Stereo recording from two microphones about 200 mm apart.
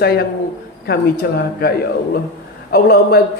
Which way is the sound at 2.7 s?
50° left (ahead or behind).